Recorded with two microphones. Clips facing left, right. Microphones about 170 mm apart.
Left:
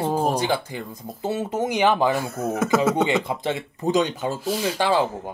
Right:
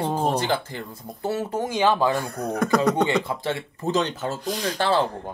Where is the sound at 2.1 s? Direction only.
Centre (ahead or behind).